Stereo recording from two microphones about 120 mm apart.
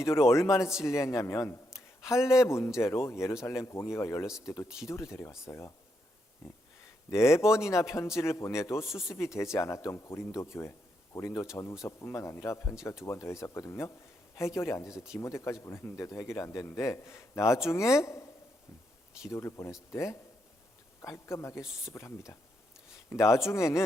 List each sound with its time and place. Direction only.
0.0 s a man's voice: 20° left (ahead or behind)
7.1 s a man's voice: 20° left (ahead or behind)
19.3 s a man's voice: 25° left (ahead or behind)